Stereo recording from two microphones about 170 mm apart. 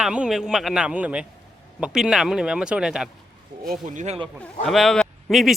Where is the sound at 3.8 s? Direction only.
45° right (ahead or behind).